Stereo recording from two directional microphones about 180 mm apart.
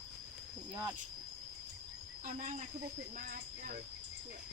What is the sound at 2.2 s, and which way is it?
Speech, 45° right (ahead or behind).